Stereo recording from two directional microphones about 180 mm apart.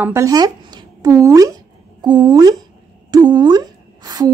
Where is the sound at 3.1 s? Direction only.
25° right (ahead or behind).